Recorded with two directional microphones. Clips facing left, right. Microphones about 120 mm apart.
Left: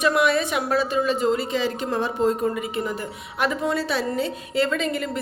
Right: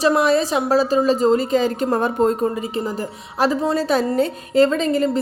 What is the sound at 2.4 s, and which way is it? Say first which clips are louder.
A woman's voice: right 3 dB; 35° right (ahead or behind).